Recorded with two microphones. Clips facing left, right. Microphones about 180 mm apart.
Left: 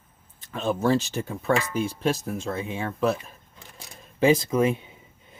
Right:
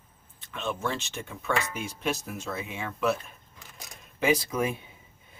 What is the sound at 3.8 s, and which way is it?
Camera, 30° left (ahead or behind).